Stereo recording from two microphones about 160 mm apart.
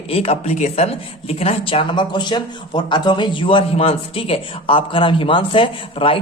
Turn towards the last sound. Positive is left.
turn(degrees=35)  # may be behind; listen again after turning